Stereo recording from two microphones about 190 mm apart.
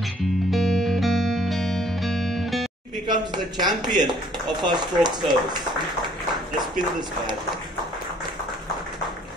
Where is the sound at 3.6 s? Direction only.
Centre (ahead or behind).